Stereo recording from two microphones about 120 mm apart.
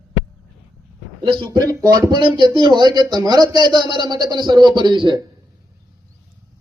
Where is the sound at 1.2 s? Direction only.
45° right (ahead or behind).